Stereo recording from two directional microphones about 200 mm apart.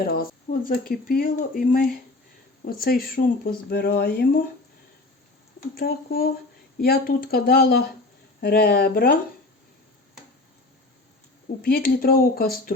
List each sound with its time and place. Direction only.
0.0 s speech: 45° left (ahead or behind)
5.7 s speech: 50° left (ahead or behind)
11.6 s speech: 50° left (ahead or behind)